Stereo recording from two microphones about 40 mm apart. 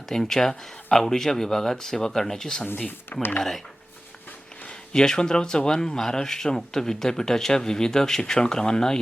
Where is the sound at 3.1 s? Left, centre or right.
Left.